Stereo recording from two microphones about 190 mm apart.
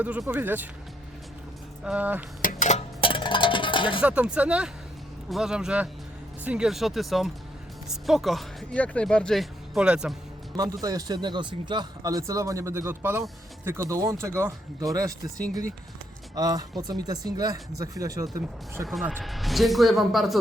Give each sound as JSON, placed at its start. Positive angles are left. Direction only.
{"t": 0.0, "sound": "speech", "side_deg": -5}
{"t": 1.8, "sound": "speech", "side_deg": -5}
{"t": 2.4, "sound": "music", "side_deg": 45}
{"t": 4.0, "sound": "speech", "side_deg": -5}
{"t": 10.6, "sound": "a man's voice", "side_deg": -20}
{"t": 16.3, "sound": "a man's voice", "side_deg": -20}
{"t": 18.9, "sound": "speech", "side_deg": -5}